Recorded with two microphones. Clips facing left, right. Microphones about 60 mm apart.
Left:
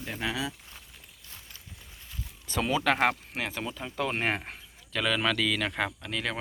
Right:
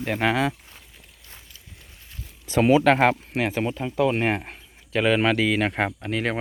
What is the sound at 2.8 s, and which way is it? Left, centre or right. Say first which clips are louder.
Speech: right 7 dB; right.